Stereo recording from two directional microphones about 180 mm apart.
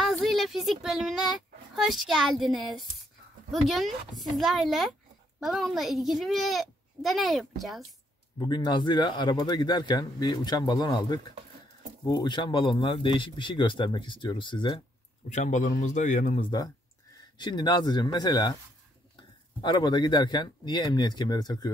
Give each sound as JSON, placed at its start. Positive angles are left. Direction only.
{"t": 0.0, "sound": "a child's voice", "side_deg": 0}
{"t": 8.4, "sound": "speech", "side_deg": 25}
{"t": 15.2, "sound": "speech", "side_deg": 40}
{"t": 16.3, "sound": "speech", "side_deg": 25}